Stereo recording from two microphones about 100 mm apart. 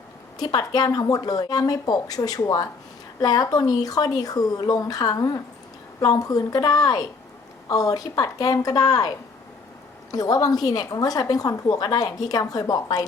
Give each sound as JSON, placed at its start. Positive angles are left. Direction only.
{"t": 0.3, "sound": "a woman's voice", "side_deg": 40}